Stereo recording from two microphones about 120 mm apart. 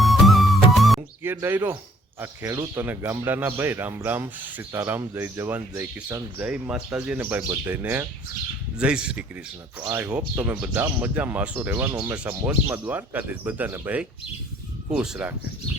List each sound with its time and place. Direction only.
0.0 s music: centre (ahead or behind)
1.2 s speech: 20° right (ahead or behind)
7.2 s speech: 20° right (ahead or behind)